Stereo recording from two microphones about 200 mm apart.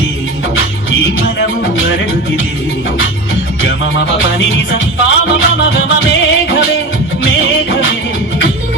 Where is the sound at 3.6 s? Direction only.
65° left (ahead or behind).